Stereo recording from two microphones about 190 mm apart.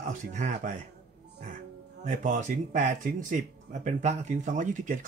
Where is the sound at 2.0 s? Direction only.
40° right (ahead or behind).